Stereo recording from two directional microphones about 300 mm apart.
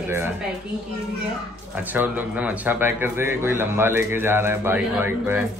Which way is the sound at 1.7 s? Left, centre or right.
Centre.